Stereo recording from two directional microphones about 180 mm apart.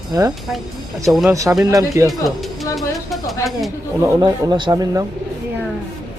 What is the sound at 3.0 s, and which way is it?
Speech, centre (ahead or behind).